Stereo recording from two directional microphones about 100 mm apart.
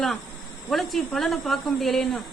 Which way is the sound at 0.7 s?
Centre (ahead or behind).